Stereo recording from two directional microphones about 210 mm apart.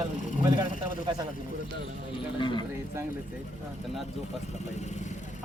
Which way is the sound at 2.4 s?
20° left (ahead or behind).